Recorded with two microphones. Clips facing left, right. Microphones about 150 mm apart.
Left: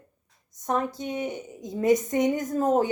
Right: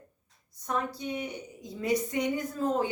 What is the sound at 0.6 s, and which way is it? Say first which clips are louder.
A woman's voice: left 5 dB; 45° left (ahead or behind).